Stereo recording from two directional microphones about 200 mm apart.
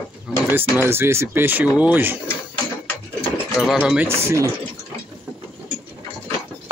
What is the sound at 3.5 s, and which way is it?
Speech, 5° right (ahead or behind).